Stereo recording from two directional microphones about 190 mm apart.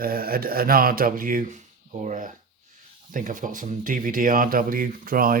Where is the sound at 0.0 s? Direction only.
50° right (ahead or behind).